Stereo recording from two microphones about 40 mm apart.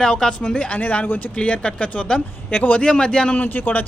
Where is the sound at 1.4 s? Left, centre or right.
Left.